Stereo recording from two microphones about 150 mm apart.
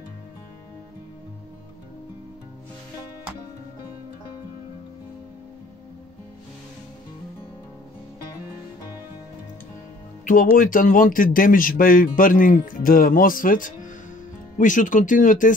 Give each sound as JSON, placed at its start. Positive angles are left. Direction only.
{"t": 10.2, "sound": "a man's voice", "side_deg": 65}